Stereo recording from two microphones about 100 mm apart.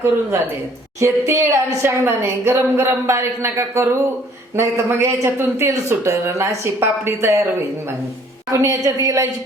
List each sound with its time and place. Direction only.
0.9 s a woman's voice: 30° right (ahead or behind)
8.5 s a woman's voice: 35° right (ahead or behind)